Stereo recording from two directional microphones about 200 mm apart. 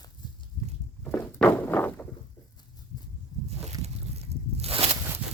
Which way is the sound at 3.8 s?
30° right (ahead or behind).